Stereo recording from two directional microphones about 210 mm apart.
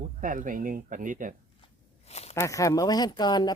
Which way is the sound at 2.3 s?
15° left (ahead or behind).